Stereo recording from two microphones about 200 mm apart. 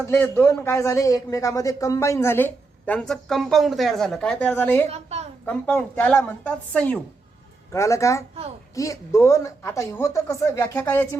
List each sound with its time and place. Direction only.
0.1 s a man's voice: 10° left (ahead or behind)
4.9 s a woman's voice: 30° right (ahead or behind)
5.5 s a man's voice: 10° left (ahead or behind)